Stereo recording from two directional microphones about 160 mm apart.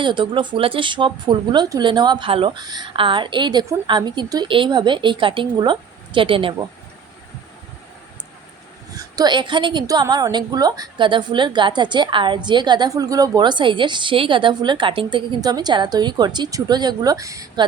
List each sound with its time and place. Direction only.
0.0 s a woman's voice: 30° right (ahead or behind)
8.9 s a woman's voice: 20° right (ahead or behind)